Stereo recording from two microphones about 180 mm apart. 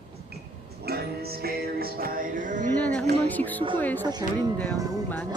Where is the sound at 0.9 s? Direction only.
60° right (ahead or behind).